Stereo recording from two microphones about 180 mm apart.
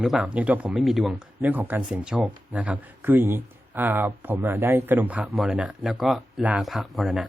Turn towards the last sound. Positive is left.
turn(degrees=0)  # may be behind; listen again after turning